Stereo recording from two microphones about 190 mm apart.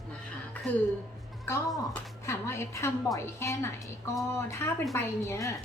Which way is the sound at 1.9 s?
15° left (ahead or behind).